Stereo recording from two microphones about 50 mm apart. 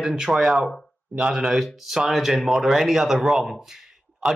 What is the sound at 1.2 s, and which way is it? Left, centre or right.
Speech, centre.